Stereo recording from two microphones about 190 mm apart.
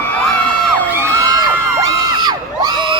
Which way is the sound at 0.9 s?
15° right (ahead or behind).